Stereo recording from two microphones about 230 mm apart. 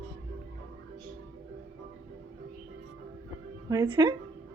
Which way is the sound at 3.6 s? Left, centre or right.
Centre.